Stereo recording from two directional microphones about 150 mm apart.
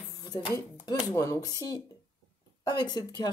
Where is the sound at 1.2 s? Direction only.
25° left (ahead or behind).